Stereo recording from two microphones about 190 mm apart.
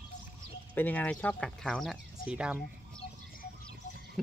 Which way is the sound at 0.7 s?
10° left (ahead or behind).